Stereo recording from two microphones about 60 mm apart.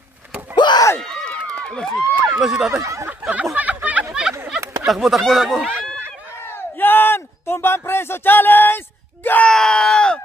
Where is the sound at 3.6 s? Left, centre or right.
Right.